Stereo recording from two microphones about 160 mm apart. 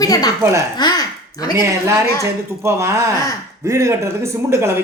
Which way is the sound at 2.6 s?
15° right (ahead or behind).